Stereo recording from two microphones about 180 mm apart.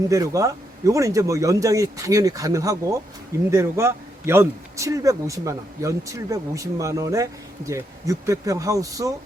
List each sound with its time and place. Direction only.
0.1 s speech: 20° right (ahead or behind)